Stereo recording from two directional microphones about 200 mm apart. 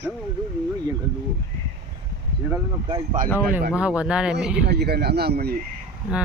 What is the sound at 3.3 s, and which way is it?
Speech, 10° right (ahead or behind).